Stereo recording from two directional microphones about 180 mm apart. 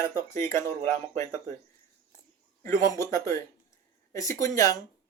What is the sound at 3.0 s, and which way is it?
Speech, 15° left (ahead or behind).